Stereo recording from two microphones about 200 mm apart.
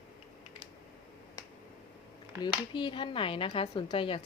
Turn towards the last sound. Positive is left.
turn(degrees=25)  # may be behind; listen again after turning